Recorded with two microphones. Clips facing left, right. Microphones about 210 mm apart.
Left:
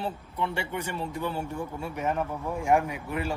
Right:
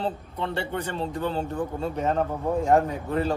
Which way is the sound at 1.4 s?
25° right (ahead or behind).